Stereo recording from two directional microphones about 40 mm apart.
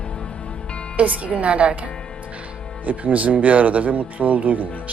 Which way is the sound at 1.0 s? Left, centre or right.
Right.